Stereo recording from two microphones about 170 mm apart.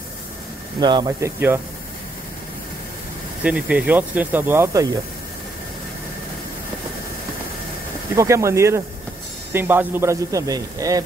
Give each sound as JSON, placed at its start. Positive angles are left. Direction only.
{"t": 0.7, "sound": "speech", "side_deg": -25}
{"t": 3.4, "sound": "a man's voice", "side_deg": -5}
{"t": 8.2, "sound": "a man's voice", "side_deg": -15}